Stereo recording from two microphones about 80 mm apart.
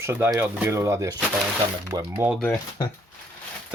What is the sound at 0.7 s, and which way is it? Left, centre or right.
Speech, right.